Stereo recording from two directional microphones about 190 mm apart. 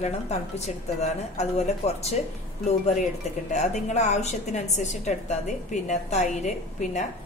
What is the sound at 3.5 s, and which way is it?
A woman's voice, 35° left (ahead or behind).